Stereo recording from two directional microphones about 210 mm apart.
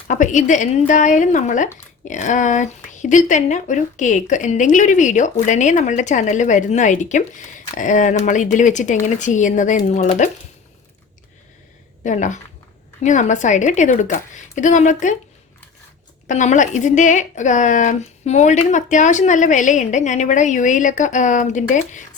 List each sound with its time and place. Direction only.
0.1 s speech: 35° left (ahead or behind)
12.0 s speech: 35° left (ahead or behind)
16.2 s speech: 35° left (ahead or behind)